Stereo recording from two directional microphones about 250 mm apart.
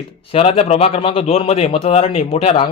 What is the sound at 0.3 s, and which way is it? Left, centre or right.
A man's voice, left.